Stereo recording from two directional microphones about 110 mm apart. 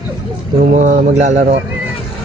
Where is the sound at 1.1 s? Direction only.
90° right.